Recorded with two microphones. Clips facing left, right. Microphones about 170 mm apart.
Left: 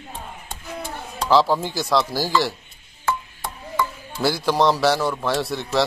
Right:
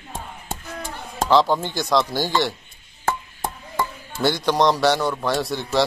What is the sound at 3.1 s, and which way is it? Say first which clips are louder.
Music: right 1 dB; 50° right (ahead or behind).